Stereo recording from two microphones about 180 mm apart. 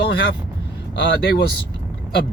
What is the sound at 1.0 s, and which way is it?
Speech, 70° left (ahead or behind).